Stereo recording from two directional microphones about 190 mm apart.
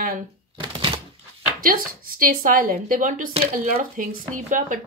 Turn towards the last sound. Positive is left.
turn(degrees=-45)  # may be behind; listen again after turning